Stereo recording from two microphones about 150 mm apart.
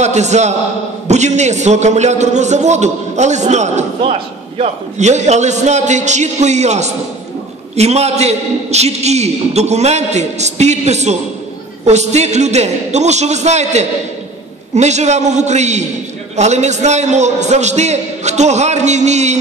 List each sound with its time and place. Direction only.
0.0 s a man's voice: 50° right (ahead or behind)